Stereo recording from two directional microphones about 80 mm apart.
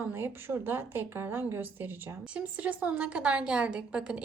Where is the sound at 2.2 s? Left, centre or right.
Centre.